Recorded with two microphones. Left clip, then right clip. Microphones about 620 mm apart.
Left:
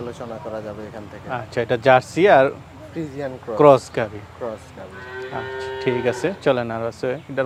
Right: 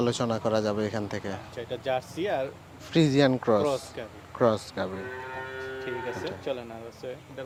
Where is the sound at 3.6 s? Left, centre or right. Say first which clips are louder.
Left 16 dB; left.